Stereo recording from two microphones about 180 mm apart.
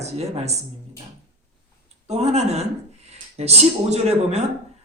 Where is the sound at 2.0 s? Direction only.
35° right (ahead or behind).